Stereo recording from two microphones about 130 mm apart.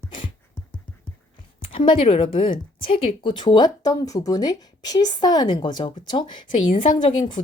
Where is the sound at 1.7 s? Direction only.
40° left (ahead or behind).